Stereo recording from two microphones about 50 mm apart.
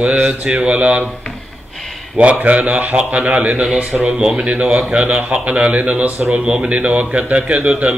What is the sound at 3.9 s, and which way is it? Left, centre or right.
A man's voice, centre.